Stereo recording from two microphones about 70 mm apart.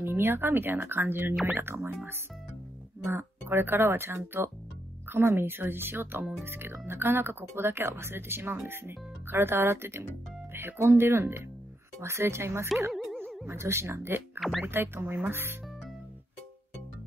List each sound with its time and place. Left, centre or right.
0.0 s speech: right
3.0 s speech: right
12.9 s a sound: centre
13.5 s speech: right